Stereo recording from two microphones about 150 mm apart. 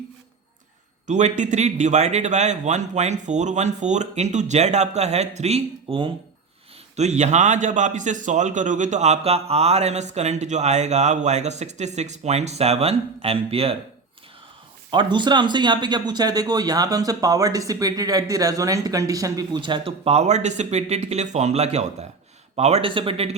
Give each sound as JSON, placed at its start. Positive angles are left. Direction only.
{"t": 1.0, "sound": "a man's voice", "side_deg": -55}
{"t": 14.8, "sound": "speech", "side_deg": -30}